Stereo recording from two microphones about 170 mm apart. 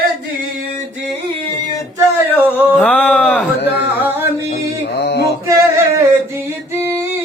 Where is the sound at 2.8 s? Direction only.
10° left (ahead or behind).